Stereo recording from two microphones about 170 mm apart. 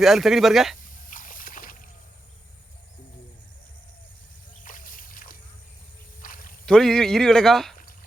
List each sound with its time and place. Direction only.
0.0 s speech: centre (ahead or behind)
0.8 s water: 50° left (ahead or behind)
4.6 s a sound: 50° left (ahead or behind)
6.7 s speech: 5° left (ahead or behind)